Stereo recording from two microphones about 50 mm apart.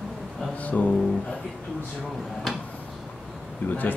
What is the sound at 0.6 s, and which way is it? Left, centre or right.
Speech, left.